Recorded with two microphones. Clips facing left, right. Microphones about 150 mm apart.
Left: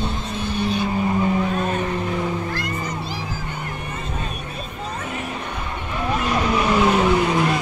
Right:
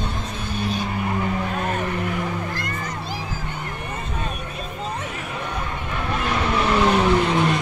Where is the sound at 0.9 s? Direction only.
20° left (ahead or behind).